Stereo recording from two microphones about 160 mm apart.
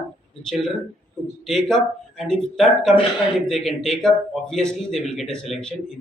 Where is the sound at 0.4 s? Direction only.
Centre (ahead or behind).